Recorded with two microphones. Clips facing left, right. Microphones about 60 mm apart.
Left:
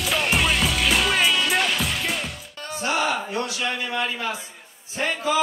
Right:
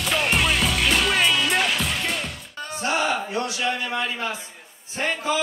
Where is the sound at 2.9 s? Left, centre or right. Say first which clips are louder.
Even; right.